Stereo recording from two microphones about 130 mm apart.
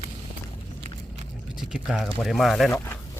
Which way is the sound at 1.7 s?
5° right (ahead or behind).